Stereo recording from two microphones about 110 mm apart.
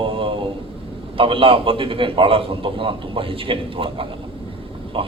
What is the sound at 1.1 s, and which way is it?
A man's voice, 55° right (ahead or behind).